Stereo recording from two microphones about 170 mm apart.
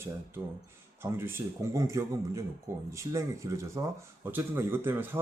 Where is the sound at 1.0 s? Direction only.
15° right (ahead or behind).